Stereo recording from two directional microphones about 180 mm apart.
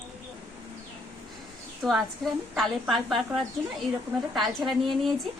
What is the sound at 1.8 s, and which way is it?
A woman's voice, centre (ahead or behind).